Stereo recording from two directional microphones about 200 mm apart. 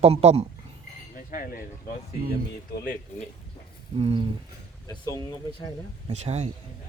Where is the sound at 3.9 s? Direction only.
30° right (ahead or behind).